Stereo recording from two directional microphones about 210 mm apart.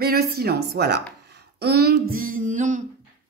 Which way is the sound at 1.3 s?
50° right (ahead or behind).